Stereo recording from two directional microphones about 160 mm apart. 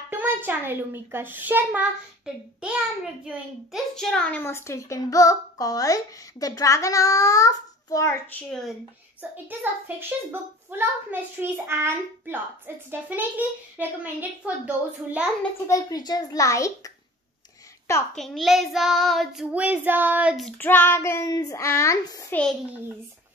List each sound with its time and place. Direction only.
0.1 s a child's voice: 10° right (ahead or behind); by 8.4 s 20° left (ahead or behind)
8.5 s child singing: 5° left (ahead or behind)
9.5 s a child's voice: 10° right (ahead or behind)
15.6 s a child's voice: 20° left (ahead or behind)
18.1 s child singing: centre (ahead or behind)
20.5 s a child's voice: 10° left (ahead or behind)